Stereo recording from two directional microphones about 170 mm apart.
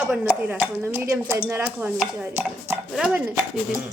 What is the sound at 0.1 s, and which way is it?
Stir, 5° right (ahead or behind).